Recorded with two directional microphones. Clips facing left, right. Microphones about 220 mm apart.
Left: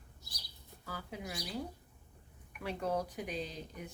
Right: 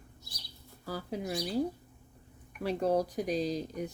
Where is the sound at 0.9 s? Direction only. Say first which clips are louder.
Right 8 dB; 35° right (ahead or behind).